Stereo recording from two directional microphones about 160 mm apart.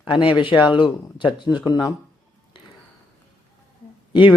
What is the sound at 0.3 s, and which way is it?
Speech, 30° left (ahead or behind).